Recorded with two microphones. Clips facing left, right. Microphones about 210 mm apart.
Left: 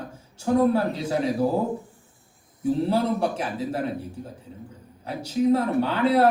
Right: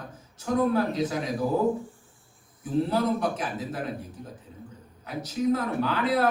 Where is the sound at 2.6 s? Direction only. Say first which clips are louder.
Left 3 dB; 30° left (ahead or behind).